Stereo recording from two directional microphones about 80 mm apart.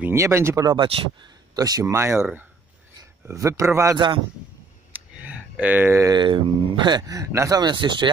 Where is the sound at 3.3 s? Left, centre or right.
Right.